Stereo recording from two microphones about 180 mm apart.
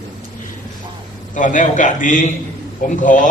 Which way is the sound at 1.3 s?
45° left (ahead or behind).